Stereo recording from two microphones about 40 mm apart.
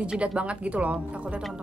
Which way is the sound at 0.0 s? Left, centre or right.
Right.